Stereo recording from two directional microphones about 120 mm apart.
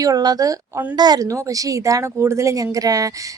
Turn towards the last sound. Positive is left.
turn(degrees=-30)  # may be behind; listen again after turning